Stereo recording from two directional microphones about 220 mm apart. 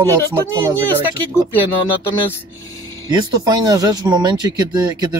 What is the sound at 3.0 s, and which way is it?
Speech, 20° right (ahead or behind).